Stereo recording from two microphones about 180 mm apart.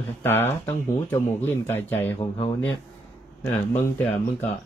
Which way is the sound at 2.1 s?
30° left (ahead or behind).